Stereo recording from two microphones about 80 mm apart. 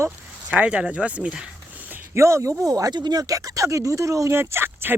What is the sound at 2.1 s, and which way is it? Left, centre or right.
Speech, right.